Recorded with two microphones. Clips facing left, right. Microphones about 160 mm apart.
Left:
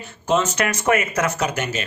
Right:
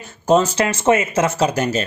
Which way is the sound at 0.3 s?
35° right (ahead or behind).